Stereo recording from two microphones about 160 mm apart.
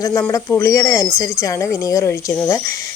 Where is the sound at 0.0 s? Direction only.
20° left (ahead or behind).